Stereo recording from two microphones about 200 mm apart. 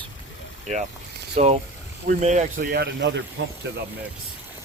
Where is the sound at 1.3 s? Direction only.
35° right (ahead or behind); by 3.8 s 55° right (ahead or behind).